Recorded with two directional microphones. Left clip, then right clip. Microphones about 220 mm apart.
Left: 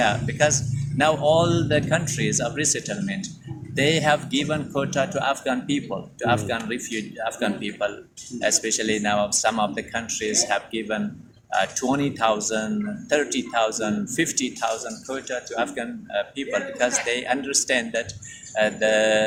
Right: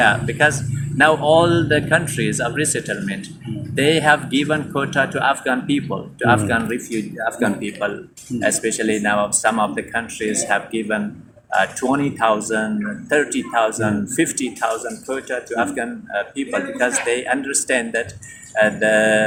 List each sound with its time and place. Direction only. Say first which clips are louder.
0.0 s a man's voice: right 6 dB; 55° left (ahead or behind)